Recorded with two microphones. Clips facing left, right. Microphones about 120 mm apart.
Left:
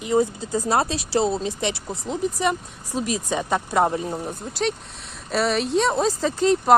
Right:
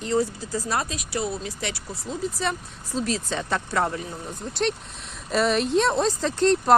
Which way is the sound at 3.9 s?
35° left (ahead or behind).